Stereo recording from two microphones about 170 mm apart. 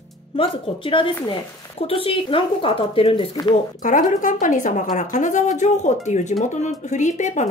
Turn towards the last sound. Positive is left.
turn(degrees=45)  # may be behind; listen again after turning